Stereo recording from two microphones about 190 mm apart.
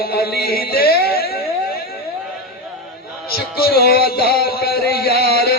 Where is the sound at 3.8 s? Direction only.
55° left (ahead or behind).